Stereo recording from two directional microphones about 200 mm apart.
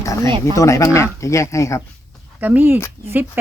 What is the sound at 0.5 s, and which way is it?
Speech, 15° left (ahead or behind).